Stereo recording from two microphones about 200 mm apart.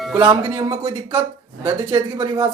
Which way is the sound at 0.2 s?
20° right (ahead or behind).